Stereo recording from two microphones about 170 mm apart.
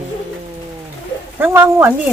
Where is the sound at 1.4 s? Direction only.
15° right (ahead or behind).